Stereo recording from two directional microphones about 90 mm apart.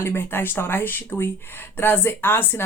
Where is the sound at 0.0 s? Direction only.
25° left (ahead or behind).